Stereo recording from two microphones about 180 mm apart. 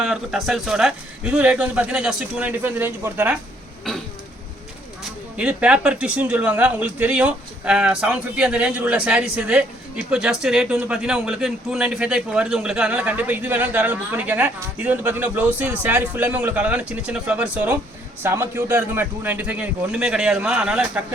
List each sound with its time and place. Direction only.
0.0 s speech: centre (ahead or behind)
5.4 s speech: 5° right (ahead or behind)